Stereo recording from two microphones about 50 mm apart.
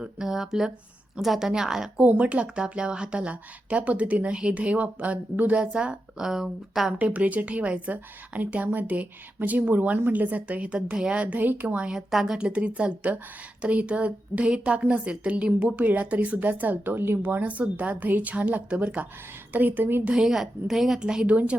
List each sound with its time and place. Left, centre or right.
0.0 s a woman's voice: centre
2.0 s speech: right; by 6.9 s centre
7.0 s a woman's voice: right
10.8 s a woman's voice: centre
11.2 s a woman's voice: right
11.8 s a woman's voice: centre
12.4 s speech: right
15.5 s a woman's voice: right
17.2 s speech: right
19.5 s a woman's voice: right
20.1 s a woman's voice: centre
21.2 s speech: right